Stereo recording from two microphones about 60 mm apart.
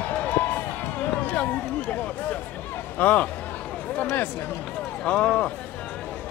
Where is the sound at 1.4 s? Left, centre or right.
Left.